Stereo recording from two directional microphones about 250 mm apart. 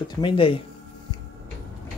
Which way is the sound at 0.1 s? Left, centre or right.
Centre.